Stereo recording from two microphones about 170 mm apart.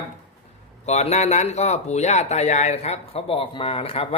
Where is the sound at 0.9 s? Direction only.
40° left (ahead or behind).